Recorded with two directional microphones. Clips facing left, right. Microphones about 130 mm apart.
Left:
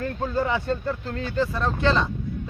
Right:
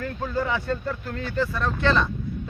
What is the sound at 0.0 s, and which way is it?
Speech, 25° left (ahead or behind).